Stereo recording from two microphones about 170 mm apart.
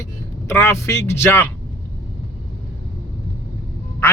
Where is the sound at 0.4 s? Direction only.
15° left (ahead or behind).